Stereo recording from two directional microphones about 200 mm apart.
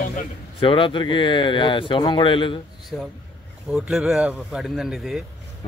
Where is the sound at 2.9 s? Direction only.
Centre (ahead or behind).